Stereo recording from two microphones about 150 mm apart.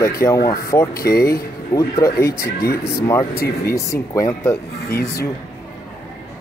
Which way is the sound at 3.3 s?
90° left.